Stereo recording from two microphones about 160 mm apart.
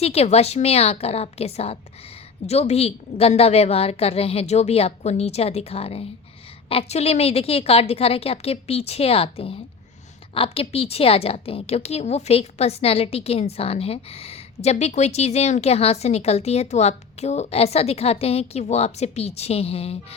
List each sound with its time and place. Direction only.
0.0 s a woman's voice: 40° left (ahead or behind)